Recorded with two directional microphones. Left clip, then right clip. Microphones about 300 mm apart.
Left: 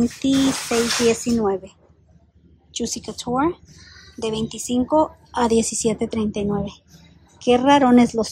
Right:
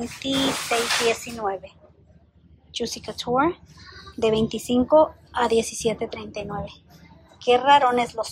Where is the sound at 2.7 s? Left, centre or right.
Centre.